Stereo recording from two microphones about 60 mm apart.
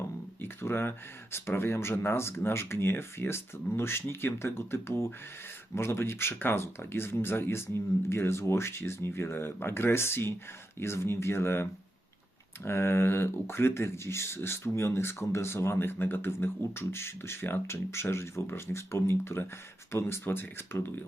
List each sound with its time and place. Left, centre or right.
0.4 s speech: left